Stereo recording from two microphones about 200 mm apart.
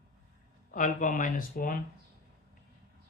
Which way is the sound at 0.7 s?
40° left (ahead or behind).